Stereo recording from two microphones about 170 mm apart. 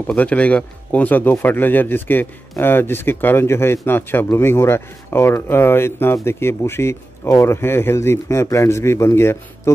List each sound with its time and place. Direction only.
0.0 s speech: 10° left (ahead or behind)